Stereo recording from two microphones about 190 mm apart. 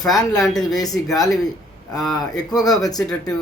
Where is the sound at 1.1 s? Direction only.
20° left (ahead or behind).